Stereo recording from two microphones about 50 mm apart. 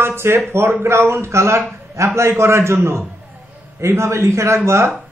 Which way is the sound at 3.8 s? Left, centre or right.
Right.